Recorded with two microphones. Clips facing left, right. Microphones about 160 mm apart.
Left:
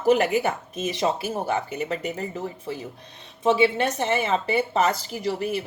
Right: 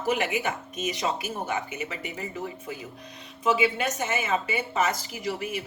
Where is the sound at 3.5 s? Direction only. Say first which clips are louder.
Left 4 dB; 30° left (ahead or behind).